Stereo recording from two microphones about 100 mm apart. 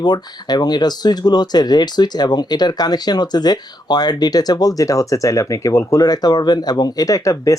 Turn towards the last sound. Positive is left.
turn(degrees=35)  # may be behind; listen again after turning